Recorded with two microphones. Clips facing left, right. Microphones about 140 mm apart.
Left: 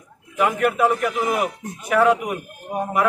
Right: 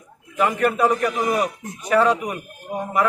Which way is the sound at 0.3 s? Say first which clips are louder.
Even; 5° left (ahead or behind).